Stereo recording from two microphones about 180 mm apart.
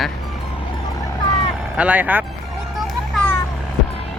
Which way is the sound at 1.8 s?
10° right (ahead or behind).